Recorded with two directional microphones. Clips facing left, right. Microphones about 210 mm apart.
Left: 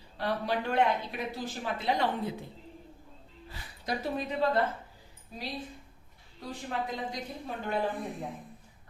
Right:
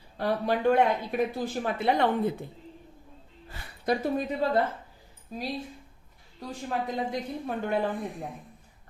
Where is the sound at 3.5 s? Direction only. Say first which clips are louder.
Right 7 dB; 55° right (ahead or behind).